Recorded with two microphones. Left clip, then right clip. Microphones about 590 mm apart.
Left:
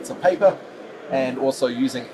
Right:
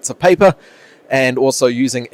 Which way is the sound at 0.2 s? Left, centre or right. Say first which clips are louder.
Right 8 dB; right.